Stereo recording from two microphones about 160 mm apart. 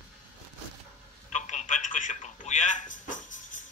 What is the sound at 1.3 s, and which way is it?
Telephone, 50° left (ahead or behind).